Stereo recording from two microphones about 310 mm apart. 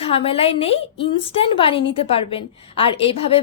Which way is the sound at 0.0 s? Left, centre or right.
Centre.